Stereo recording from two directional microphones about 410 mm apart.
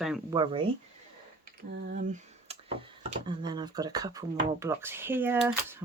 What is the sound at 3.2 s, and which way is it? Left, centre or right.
Speech, centre.